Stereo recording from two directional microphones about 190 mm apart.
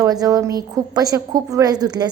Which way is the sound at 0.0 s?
20° right (ahead or behind).